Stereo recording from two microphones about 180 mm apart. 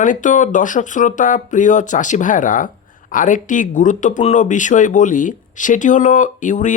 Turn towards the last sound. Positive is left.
turn(degrees=45)  # may be behind; listen again after turning